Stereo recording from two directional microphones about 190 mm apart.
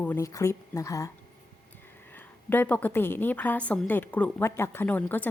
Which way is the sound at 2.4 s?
10° left (ahead or behind).